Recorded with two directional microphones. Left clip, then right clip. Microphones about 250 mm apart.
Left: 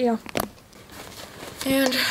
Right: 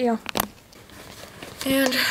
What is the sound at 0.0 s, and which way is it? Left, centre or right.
Speech, centre.